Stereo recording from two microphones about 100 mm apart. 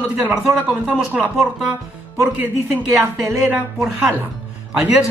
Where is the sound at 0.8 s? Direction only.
10° right (ahead or behind).